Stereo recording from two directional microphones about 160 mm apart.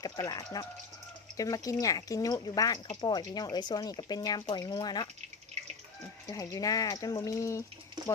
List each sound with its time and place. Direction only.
0.0 s speech: 25° left (ahead or behind)
6.2 s speech: 20° left (ahead or behind)
8.0 s a sound: 30° right (ahead or behind)